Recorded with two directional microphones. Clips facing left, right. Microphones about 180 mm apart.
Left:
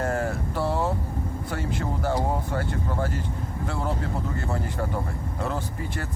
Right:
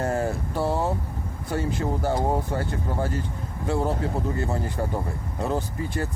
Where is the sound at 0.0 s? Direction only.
25° right (ahead or behind).